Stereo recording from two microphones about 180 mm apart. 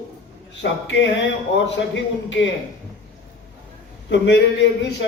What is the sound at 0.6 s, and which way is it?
A woman's voice, 85° left.